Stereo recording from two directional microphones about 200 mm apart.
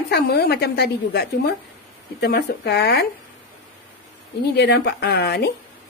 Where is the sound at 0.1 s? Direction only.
55° left (ahead or behind).